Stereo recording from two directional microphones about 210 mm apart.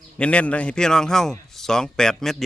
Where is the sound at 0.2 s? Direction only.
5° left (ahead or behind).